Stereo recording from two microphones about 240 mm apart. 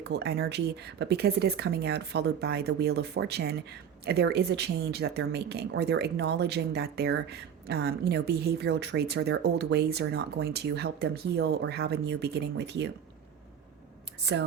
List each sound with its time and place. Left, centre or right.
0.0 s speech: right
14.3 s speech: right